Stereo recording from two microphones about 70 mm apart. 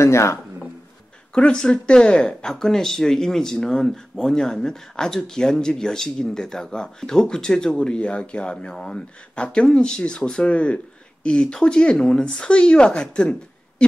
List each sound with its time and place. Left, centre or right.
0.0 s speech: left
1.3 s speech: centre